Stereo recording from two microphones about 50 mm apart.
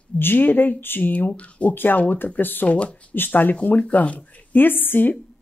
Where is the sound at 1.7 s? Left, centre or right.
Left.